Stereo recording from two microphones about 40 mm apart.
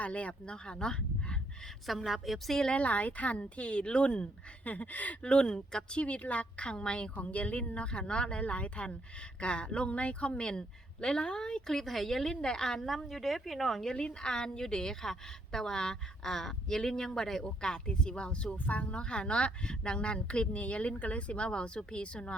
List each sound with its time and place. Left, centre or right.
0.0 s speech: left
1.9 s speech: centre
2.7 s speech: left
5.2 s a woman's voice: left
6.1 s speech: left
6.7 s a woman's voice: left
7.2 s a woman's voice: left; by 12.9 s centre
12.9 s speech: centre
13.9 s a woman's voice: left
18.5 s speech: left
18.9 s a woman's voice: left